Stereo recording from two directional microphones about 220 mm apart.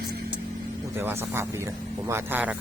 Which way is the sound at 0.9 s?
10° right (ahead or behind).